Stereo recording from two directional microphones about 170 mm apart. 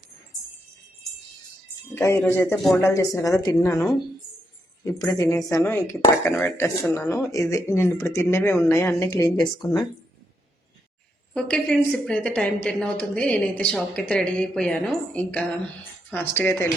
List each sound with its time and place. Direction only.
2.0 s a woman's voice: 15° left (ahead or behind)
11.3 s a woman's voice: 5° left (ahead or behind)